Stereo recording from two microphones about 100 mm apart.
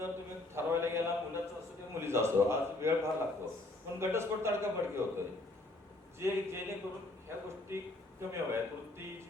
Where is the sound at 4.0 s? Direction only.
25° right (ahead or behind).